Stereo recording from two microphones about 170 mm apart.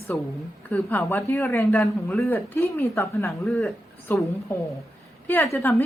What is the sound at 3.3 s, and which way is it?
A woman's voice, 5° left (ahead or behind).